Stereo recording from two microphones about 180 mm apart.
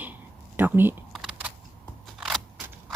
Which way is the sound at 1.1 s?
5° right (ahead or behind).